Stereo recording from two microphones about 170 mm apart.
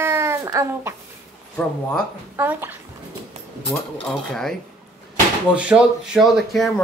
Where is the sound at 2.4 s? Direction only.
10° right (ahead or behind).